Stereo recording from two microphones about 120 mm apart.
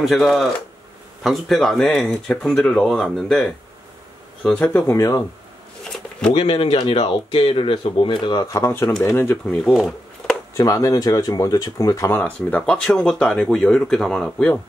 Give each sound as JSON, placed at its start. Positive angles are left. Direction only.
{"t": 0.0, "sound": "speech", "side_deg": 0}
{"t": 6.3, "sound": "speech", "side_deg": 50}
{"t": 9.5, "sound": "speech", "side_deg": 0}
{"t": 10.5, "sound": "speech", "side_deg": 30}
{"t": 12.4, "sound": "speech", "side_deg": 10}